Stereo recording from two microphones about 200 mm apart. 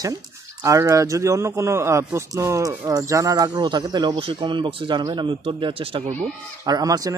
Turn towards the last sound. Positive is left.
turn(degrees=-15)  # may be behind; listen again after turning